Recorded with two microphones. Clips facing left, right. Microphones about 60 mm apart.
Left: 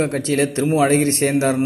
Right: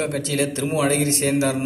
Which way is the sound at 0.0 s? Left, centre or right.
Left.